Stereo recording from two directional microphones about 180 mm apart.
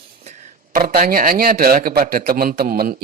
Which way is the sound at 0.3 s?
50° right (ahead or behind).